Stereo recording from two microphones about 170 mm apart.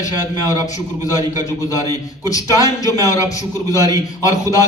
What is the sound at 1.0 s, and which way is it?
A man's voice, 20° left (ahead or behind).